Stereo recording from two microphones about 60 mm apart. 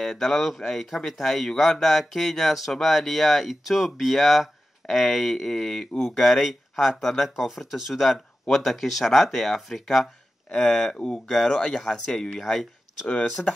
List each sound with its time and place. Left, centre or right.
0.0 s speech: centre
10.5 s speech: centre
13.1 s speech: left